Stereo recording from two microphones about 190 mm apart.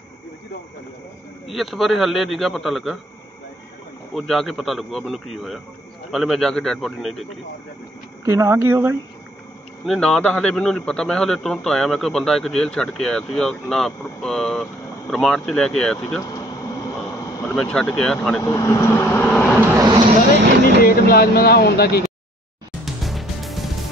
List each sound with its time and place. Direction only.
1.5 s a man's voice: centre (ahead or behind)
4.1 s a man's voice: centre (ahead or behind)
8.3 s speech: 15° right (ahead or behind)
9.8 s a man's voice: 5° left (ahead or behind)
16.2 s air conditioning: 20° left (ahead or behind)
17.6 s a man's voice: 5° left (ahead or behind)
18.4 s speech: 20° left (ahead or behind)
20.8 s speech: 55° left (ahead or behind)
23.0 s music: centre (ahead or behind)